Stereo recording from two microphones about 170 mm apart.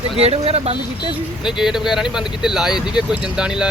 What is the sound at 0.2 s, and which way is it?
Speech, 35° right (ahead or behind).